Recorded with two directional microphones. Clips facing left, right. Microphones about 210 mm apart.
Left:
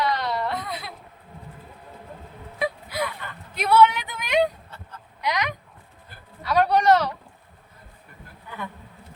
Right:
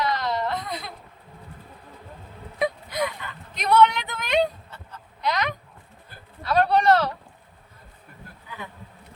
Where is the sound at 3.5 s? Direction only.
5° left (ahead or behind).